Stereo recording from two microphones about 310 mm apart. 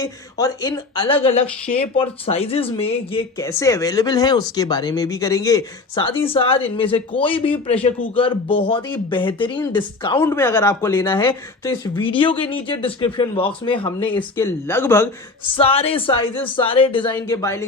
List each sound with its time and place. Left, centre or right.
0.0 s speech: centre
15.5 s speech: centre